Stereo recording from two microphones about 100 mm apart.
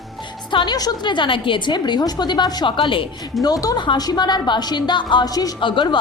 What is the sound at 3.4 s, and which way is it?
A woman's voice, 40° left (ahead or behind).